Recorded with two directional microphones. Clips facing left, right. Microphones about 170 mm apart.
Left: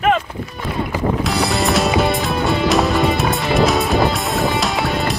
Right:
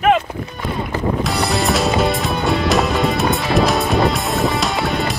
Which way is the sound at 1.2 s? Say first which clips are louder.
Even; centre (ahead or behind).